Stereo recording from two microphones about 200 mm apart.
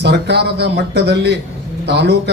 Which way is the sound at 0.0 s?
60° right (ahead or behind).